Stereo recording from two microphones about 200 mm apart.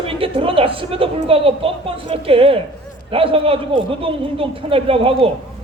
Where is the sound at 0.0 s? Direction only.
25° right (ahead or behind).